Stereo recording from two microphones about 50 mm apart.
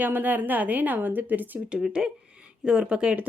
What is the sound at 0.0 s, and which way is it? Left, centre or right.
A woman's voice, right.